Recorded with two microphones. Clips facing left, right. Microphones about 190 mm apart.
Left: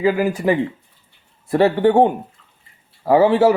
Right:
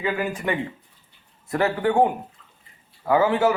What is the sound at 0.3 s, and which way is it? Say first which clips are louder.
A man's voice: left 8 dB; 30° left (ahead or behind).